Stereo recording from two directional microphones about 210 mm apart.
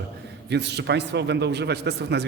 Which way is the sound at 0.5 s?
55° right (ahead or behind).